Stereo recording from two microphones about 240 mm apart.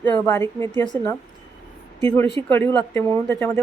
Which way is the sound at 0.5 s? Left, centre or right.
Centre.